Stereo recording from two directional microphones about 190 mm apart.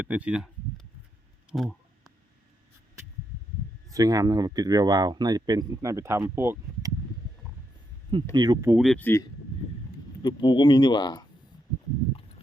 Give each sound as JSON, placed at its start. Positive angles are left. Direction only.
{"t": 0.0, "sound": "speech", "side_deg": -5}
{"t": 1.5, "sound": "a sound", "side_deg": 0}
{"t": 3.8, "sound": "speech", "side_deg": -20}
{"t": 8.1, "sound": "speech", "side_deg": -25}
{"t": 8.7, "sound": "speech", "side_deg": 0}
{"t": 10.2, "sound": "speech", "side_deg": 25}